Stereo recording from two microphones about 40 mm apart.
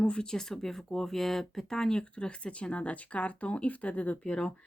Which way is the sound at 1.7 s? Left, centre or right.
Centre.